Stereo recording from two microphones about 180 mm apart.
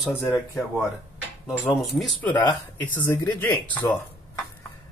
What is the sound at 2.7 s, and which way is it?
Speech, 10° left (ahead or behind).